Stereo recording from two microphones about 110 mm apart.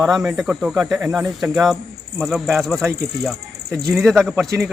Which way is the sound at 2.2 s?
Centre (ahead or behind).